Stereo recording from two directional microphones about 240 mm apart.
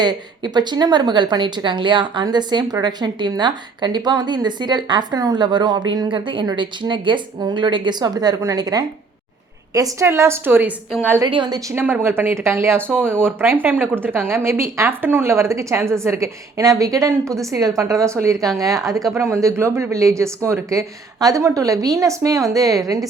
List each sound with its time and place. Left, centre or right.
0.0 s a woman's voice: centre